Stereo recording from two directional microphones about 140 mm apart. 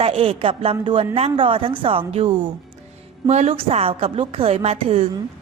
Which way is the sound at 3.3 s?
55° right (ahead or behind).